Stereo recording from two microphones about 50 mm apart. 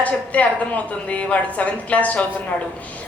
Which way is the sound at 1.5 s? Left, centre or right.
Left.